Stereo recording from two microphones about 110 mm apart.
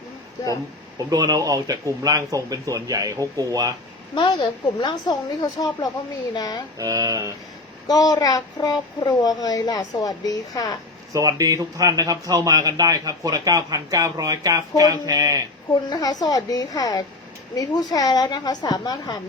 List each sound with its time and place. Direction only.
0.9 s a man's voice: 35° right (ahead or behind)
4.1 s speech: 45° left (ahead or behind)
6.7 s a man's voice: 35° right (ahead or behind)
7.9 s speech: 35° left (ahead or behind)
11.1 s a man's voice: 30° right (ahead or behind)
15.7 s speech: 35° left (ahead or behind)